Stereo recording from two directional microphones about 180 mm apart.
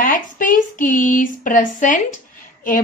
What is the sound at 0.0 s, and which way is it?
Speech, 50° left (ahead or behind).